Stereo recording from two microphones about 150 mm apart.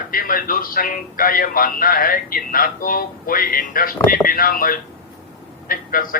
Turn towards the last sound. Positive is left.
turn(degrees=70)  # may be behind; listen again after turning